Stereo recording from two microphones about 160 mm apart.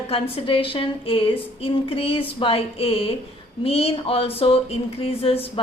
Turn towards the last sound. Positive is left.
turn(degrees=35)  # may be behind; listen again after turning